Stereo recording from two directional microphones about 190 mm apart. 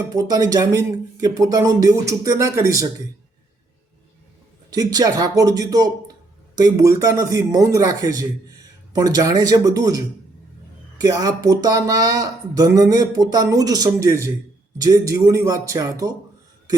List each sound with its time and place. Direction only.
0.1 s speech: 20° right (ahead or behind)
4.7 s speech: 20° right (ahead or behind)
11.0 s speech: 20° right (ahead or behind)